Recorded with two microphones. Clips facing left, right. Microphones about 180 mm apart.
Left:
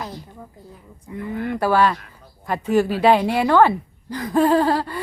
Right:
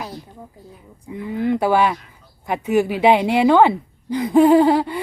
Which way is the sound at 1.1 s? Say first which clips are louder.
Right 5 dB; 15° right (ahead or behind).